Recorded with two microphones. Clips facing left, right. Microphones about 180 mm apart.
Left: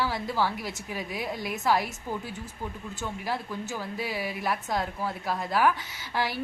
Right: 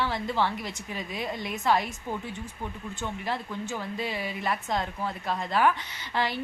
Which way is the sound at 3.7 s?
5° left (ahead or behind).